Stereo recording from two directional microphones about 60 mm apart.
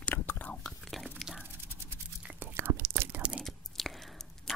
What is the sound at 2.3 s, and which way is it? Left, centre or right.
Whispering, right.